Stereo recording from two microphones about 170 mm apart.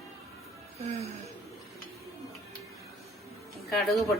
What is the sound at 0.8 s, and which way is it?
Speech, 40° right (ahead or behind).